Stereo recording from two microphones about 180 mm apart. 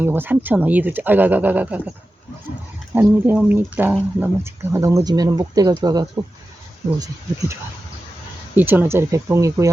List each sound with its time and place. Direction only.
0.0 s speech: 10° right (ahead or behind)
2.9 s speech: 10° right (ahead or behind)
8.5 s speech: 10° right (ahead or behind)